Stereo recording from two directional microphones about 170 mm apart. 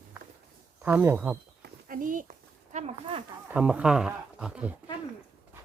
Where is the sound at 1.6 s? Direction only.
55° right (ahead or behind).